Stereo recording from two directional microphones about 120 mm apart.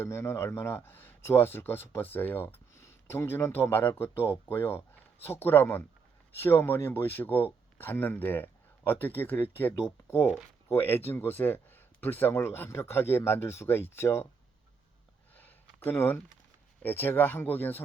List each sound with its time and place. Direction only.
0.0 s speech: 20° left (ahead or behind)
15.4 s a sound: 15° left (ahead or behind)
16.8 s speech: 15° left (ahead or behind)